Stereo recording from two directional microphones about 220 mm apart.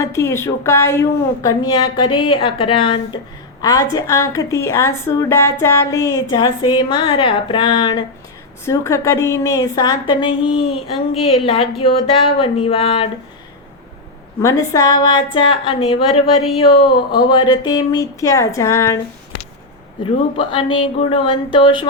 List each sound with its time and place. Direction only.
0.0 s a woman's voice: 10° left (ahead or behind)
14.4 s speech: 15° left (ahead or behind)
17.2 s a woman's voice: 20° left (ahead or behind)
20.3 s speech: 20° left (ahead or behind)